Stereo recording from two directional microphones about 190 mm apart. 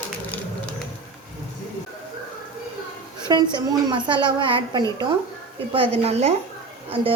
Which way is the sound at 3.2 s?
20° right (ahead or behind).